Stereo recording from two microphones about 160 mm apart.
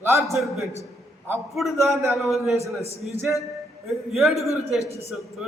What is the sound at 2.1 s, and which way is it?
Speech, centre (ahead or behind).